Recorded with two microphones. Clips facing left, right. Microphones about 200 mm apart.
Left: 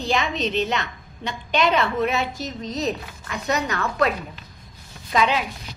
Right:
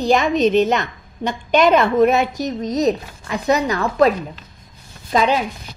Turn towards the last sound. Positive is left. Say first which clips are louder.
# right 4 dB
turn(degrees=-40)  # may be behind; listen again after turning